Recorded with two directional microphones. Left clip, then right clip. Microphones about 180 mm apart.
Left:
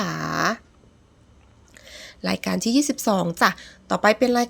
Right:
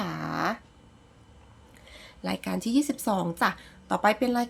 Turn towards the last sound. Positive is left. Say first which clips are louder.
# left 6 dB
turn(degrees=35)  # may be behind; listen again after turning